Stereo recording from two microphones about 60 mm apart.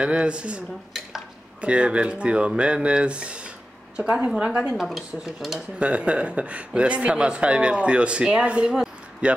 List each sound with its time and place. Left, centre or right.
0.0 s a woman's voice: centre
4.7 s speech: centre
5.8 s speech: centre